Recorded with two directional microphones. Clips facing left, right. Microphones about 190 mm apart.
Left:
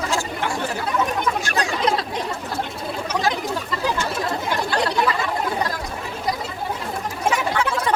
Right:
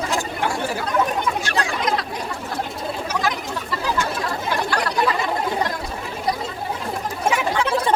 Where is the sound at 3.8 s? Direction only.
25° left (ahead or behind).